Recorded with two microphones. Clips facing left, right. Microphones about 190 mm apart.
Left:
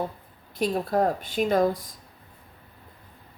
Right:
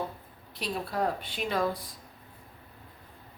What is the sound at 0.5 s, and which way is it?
A woman's voice, 45° left (ahead or behind).